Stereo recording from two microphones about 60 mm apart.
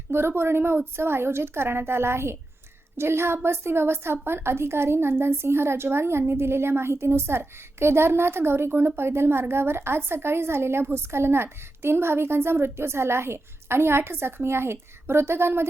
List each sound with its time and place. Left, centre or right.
0.1 s a woman's voice: right